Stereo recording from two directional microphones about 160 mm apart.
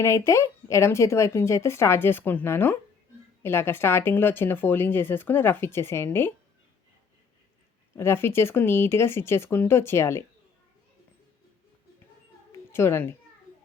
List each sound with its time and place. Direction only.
0.0 s speech: 20° left (ahead or behind)
7.9 s speech: 15° left (ahead or behind)
12.5 s cat: 15° left (ahead or behind)